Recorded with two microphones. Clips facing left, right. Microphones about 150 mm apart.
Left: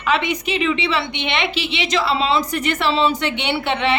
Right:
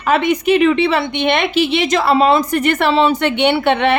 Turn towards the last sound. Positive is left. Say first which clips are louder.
# right 6 dB
turn(degrees=-55)  # may be behind; listen again after turning